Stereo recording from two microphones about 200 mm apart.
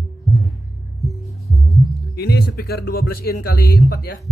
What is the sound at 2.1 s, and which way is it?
Speech, 55° left (ahead or behind).